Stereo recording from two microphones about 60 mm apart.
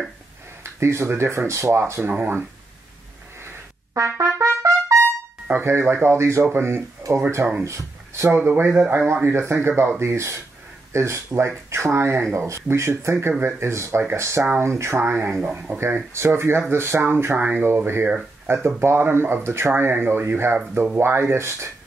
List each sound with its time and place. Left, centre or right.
0.7 s speech: right
2.0 s speech: right
3.9 s trumpet: right
5.5 s speech: right
8.4 s speech: right
15.5 s speech: right
15.8 s speech: right
17.0 s speech: right
17.6 s speech: right